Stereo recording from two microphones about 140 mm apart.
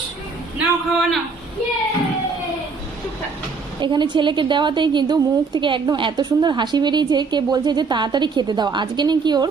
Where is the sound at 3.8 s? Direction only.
35° right (ahead or behind).